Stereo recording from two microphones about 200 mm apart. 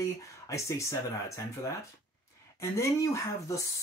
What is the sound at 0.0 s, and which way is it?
Speech, 15° left (ahead or behind).